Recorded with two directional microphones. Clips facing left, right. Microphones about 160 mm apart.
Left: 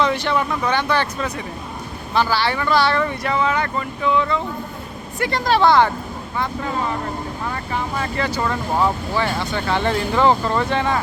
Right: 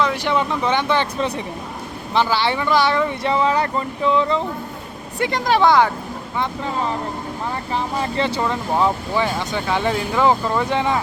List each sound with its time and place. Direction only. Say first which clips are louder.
0.3 s speech: right 1 dB; 20° right (ahead or behind)
3.2 s speech: right 4 dB; 30° right (ahead or behind)
5.2 s speech: even; 15° right (ahead or behind)
7.7 s speech: right 2 dB; 25° right (ahead or behind)